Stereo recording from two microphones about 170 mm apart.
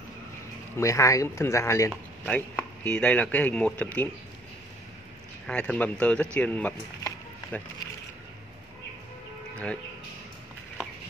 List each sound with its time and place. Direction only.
0.7 s speech: 15° left (ahead or behind)
5.5 s speech: 5° left (ahead or behind)